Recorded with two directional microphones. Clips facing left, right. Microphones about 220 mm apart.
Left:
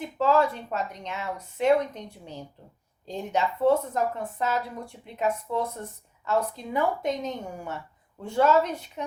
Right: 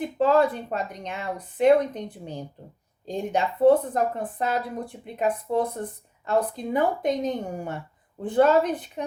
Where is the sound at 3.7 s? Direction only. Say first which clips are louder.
Right 5 dB; 30° right (ahead or behind).